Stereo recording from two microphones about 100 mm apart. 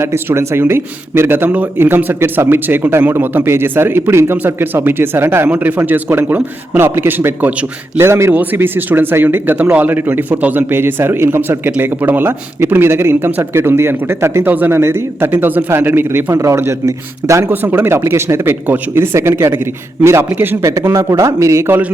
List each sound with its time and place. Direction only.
0.0 s speech: 25° right (ahead or behind)